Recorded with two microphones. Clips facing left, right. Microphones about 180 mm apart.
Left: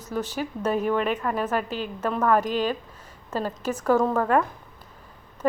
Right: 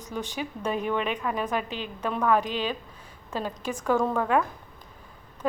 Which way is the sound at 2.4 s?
45° left (ahead or behind).